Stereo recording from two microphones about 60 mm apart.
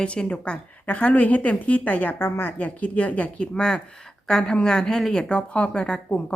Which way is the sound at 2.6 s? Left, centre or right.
Left.